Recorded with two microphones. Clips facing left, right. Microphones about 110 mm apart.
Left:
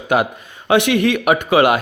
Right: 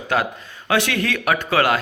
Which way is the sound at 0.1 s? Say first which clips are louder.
Left 5 dB; 20° left (ahead or behind).